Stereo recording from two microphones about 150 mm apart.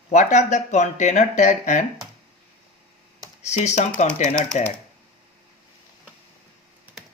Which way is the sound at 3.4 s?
50° left (ahead or behind).